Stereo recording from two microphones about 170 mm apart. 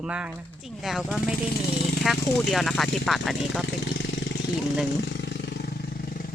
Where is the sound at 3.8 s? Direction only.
90° left; by 6.3 s 60° left (ahead or behind).